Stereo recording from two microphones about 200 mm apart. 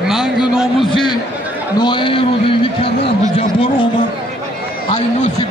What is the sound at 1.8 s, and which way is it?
Speech, 25° left (ahead or behind).